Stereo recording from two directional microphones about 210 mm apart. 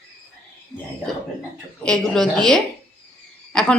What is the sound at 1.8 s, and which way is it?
Speech, 5° left (ahead or behind).